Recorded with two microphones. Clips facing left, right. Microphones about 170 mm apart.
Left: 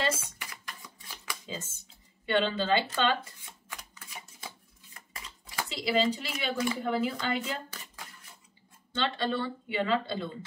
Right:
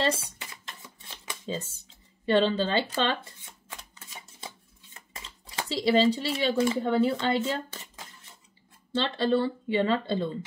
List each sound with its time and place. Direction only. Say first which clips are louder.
0.0 s shuffling cards: right 4 dB; 30° right (ahead or behind)
2.2 s speech: right 4 dB; 35° right (ahead or behind)
3.6 s typewriter: right 1 dB; 25° right (ahead or behind)
4.9 s speech: right 1 dB; 25° right (ahead or behind)
8.9 s speech: right 5 dB; 35° right (ahead or behind)